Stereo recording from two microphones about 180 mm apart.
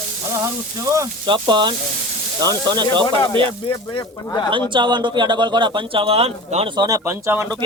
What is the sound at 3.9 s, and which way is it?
Speech, 25° left (ahead or behind).